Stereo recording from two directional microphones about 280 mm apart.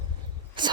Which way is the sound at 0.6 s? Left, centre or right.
Centre.